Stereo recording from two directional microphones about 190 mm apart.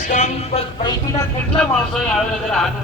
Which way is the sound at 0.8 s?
20° left (ahead or behind).